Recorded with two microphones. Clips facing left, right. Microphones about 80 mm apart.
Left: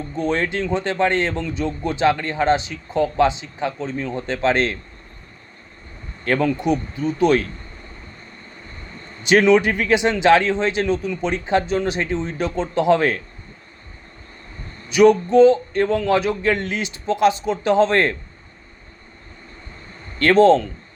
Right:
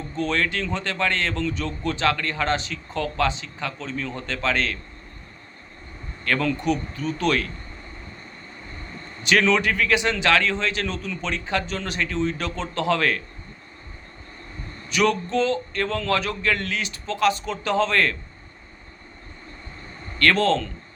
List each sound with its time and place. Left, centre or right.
0.2 s a man's voice: centre
6.2 s a man's voice: left
9.2 s a man's voice: centre
14.8 s a man's voice: centre
20.2 s a man's voice: centre